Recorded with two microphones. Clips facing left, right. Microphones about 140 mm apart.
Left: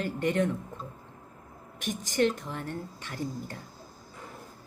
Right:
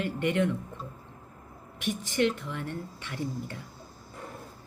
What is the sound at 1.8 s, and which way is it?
A woman's voice, 40° left (ahead or behind).